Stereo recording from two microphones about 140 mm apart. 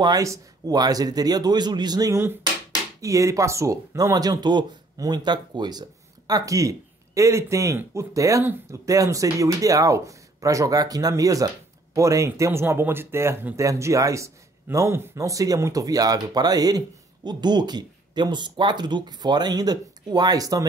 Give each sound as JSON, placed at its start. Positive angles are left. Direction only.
{"t": 0.0, "sound": "speech", "side_deg": -25}